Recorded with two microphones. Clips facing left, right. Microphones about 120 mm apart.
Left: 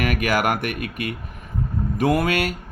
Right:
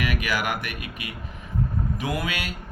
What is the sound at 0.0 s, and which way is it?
Speech, 50° left (ahead or behind).